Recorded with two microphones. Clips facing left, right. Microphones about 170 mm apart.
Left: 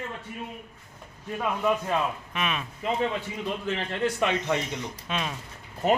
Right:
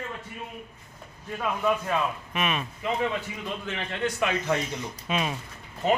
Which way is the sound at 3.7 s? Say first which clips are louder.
Left 2 dB; 35° left (ahead or behind).